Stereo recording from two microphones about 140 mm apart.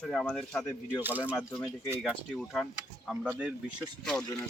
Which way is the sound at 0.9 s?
10° right (ahead or behind).